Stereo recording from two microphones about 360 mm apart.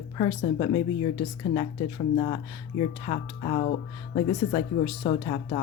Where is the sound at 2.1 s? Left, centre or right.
Centre.